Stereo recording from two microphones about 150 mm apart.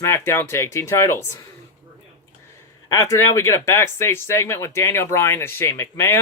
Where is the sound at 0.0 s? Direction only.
15° left (ahead or behind).